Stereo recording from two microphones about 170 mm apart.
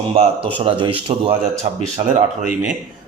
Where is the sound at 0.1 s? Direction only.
35° right (ahead or behind).